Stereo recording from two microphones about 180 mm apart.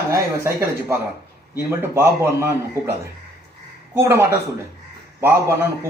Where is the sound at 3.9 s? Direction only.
15° right (ahead or behind).